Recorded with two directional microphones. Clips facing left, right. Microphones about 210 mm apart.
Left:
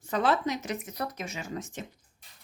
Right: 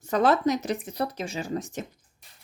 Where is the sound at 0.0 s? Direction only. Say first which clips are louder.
Right 5 dB; 40° right (ahead or behind).